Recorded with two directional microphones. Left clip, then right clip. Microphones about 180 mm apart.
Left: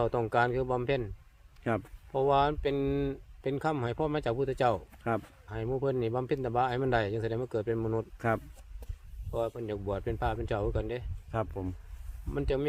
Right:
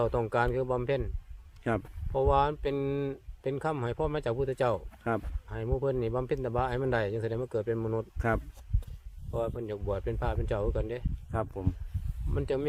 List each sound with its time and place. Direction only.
0.0 s speech: 30° left (ahead or behind)
1.6 s speech: centre (ahead or behind)
2.1 s speech: 30° left (ahead or behind)
9.5 s speech: 30° left (ahead or behind)
11.3 s speech: 5° right (ahead or behind)
12.3 s speech: 35° left (ahead or behind)